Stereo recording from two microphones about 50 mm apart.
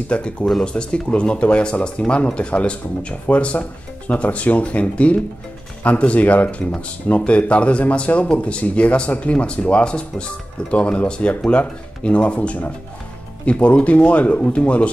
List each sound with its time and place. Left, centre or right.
0.1 s speech: left